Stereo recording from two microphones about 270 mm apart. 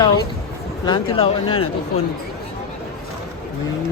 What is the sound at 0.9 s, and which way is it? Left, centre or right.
Speech, centre.